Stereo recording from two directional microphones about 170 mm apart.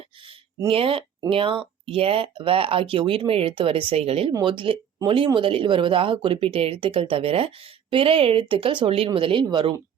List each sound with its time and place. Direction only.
0.7 s speech: 35° right (ahead or behind)